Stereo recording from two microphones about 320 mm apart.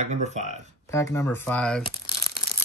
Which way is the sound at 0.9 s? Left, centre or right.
Centre.